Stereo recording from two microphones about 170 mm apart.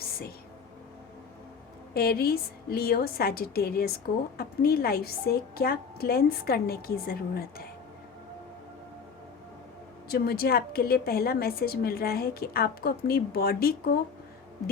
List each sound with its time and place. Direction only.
1.9 s a woman's voice: 65° left (ahead or behind)
10.1 s a woman's voice: 65° left (ahead or behind)